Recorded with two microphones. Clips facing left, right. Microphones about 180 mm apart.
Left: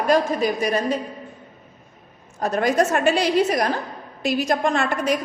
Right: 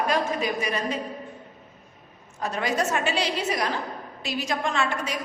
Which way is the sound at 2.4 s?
45° left (ahead or behind).